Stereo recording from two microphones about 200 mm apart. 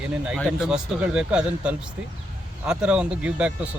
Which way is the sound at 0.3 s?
5° right (ahead or behind).